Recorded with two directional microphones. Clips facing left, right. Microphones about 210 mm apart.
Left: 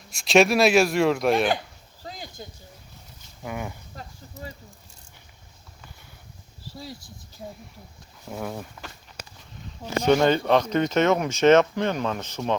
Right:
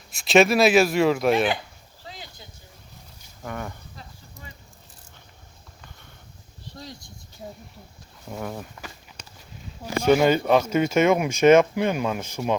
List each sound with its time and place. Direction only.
0.1 s speech: centre (ahead or behind)
2.0 s a sound: 45° left (ahead or behind)
3.4 s speech: 10° left (ahead or behind)
6.7 s speech: 5° left (ahead or behind)